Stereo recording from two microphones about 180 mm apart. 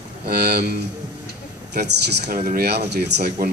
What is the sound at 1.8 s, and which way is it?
A woman's voice, 65° right (ahead or behind).